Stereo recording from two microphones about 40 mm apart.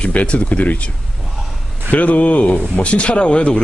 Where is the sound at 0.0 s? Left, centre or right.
Left.